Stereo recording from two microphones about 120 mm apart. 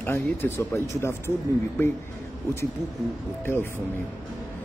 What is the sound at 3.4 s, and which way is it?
Speech, 20° left (ahead or behind).